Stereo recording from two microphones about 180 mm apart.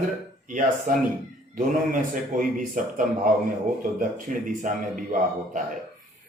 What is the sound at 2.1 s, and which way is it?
Speech, 45° right (ahead or behind).